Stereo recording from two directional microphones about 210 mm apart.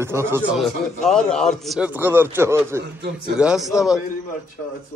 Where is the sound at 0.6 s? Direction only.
Centre (ahead or behind).